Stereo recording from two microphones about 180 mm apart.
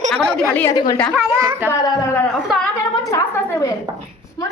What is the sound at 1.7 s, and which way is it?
Speech, 20° left (ahead or behind).